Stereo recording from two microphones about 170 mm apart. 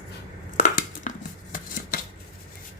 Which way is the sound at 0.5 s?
50° left (ahead or behind).